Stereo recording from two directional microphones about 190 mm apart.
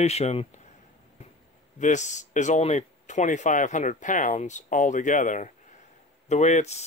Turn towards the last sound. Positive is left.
turn(degrees=35)  # may be behind; listen again after turning